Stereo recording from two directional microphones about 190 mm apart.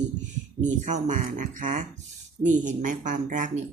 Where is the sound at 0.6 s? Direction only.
40° right (ahead or behind).